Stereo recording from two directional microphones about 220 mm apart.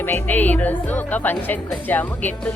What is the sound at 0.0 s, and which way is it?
Speech, 10° left (ahead or behind).